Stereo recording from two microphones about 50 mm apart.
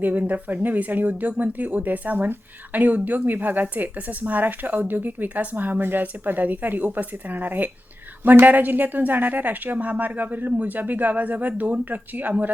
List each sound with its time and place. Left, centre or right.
0.0 s speech: right